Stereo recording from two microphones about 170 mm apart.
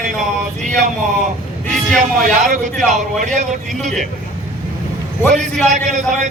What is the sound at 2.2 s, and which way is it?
Speech, 50° right (ahead or behind).